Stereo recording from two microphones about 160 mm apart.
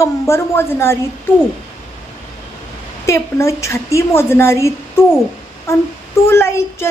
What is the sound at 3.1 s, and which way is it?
A woman's voice, 20° left (ahead or behind).